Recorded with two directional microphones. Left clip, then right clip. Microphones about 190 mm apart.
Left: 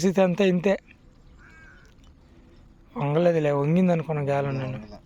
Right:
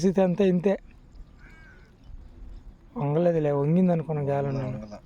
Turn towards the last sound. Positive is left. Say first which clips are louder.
# left 2 dB
turn(degrees=-5)  # may be behind; listen again after turning